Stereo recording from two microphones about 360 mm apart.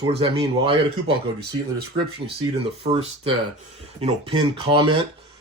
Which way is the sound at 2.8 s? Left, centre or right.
Centre.